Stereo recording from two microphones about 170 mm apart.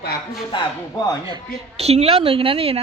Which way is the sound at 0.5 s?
20° left (ahead or behind).